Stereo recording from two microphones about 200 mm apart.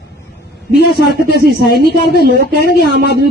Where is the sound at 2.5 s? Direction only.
55° left (ahead or behind).